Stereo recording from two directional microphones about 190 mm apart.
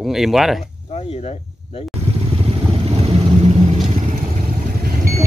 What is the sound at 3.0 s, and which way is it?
Vehicle, 35° right (ahead or behind).